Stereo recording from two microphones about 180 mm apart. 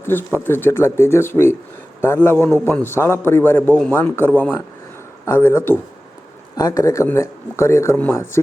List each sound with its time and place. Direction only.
0.0 s speech: 10° left (ahead or behind)